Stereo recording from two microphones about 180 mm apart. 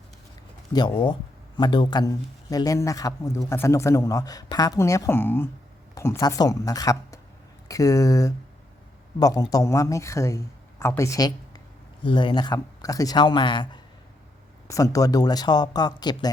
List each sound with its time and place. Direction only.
0.7 s a man's voice: 25° left (ahead or behind)
14.7 s a man's voice: 20° left (ahead or behind)